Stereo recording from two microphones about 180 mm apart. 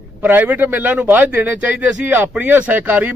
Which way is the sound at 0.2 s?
10° right (ahead or behind).